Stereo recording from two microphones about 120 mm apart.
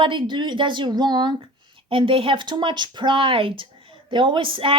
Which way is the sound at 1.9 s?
50° right (ahead or behind).